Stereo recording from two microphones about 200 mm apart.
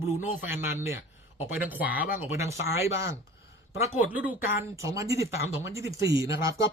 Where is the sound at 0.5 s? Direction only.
10° right (ahead or behind).